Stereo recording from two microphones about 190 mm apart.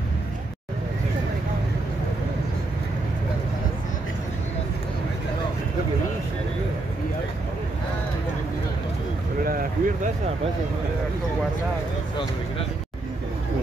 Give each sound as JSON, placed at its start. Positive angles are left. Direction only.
{"t": 9.4, "sound": "vehicle", "side_deg": -50}